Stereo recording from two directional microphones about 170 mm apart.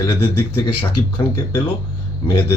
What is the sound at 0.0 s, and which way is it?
Speech, 25° left (ahead or behind).